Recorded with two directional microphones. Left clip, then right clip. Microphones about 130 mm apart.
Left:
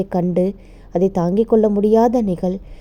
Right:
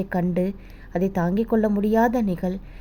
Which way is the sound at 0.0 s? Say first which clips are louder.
Left 6 dB; 45° left (ahead or behind).